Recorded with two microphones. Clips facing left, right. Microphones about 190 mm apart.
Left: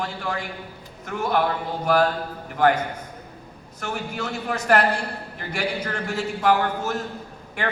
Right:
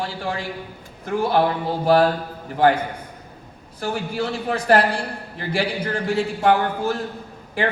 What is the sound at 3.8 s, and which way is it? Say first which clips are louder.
A man's voice: right 5 dB; 30° right (ahead or behind).